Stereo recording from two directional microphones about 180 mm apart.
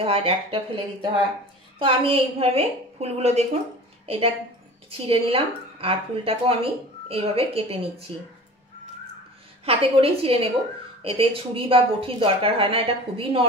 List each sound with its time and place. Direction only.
0.0 s a woman's voice: 30° right (ahead or behind)
1.8 s a woman's voice: 30° right (ahead or behind)
4.0 s a sound: 35° right (ahead or behind)
4.9 s a woman's voice: 30° right (ahead or behind)
9.7 s a woman's voice: 30° right (ahead or behind)